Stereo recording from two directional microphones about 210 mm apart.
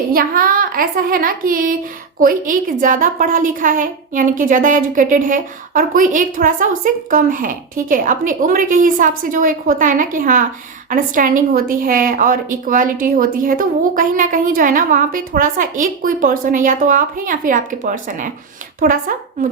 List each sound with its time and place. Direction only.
0.1 s a woman's voice: 45° right (ahead or behind)